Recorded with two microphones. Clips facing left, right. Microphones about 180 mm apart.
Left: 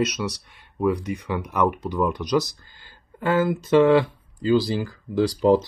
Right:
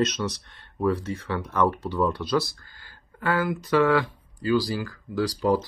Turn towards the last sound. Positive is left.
turn(degrees=20)  # may be behind; listen again after turning